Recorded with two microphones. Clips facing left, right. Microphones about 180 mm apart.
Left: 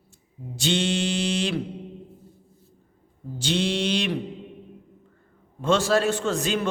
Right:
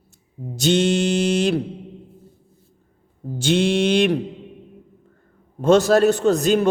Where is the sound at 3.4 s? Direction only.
50° right (ahead or behind).